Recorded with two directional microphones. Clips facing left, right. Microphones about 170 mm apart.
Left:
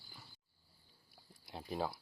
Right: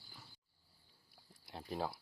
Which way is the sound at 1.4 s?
10° left (ahead or behind).